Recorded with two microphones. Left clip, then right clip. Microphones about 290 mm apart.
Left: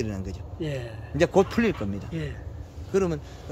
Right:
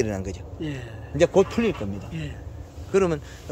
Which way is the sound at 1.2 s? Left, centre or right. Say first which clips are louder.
Right 2 dB; centre.